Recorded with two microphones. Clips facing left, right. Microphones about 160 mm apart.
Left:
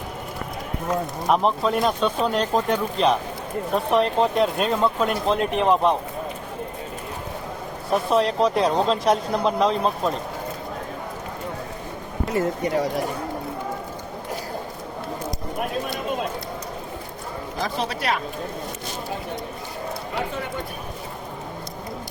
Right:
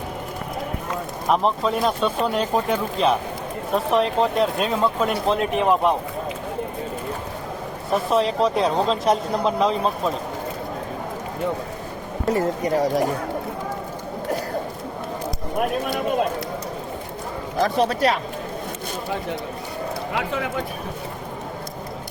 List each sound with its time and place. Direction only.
1.3 s speech: centre (ahead or behind)
7.9 s speech: centre (ahead or behind)
12.3 s speech: 35° right (ahead or behind)
17.6 s speech: 55° right (ahead or behind)
20.1 s speech: 90° right